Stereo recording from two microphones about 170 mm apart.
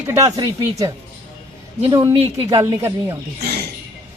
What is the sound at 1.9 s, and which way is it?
A woman's voice, 20° right (ahead or behind).